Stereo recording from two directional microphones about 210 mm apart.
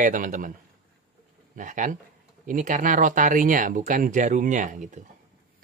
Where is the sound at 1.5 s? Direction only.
40° right (ahead or behind).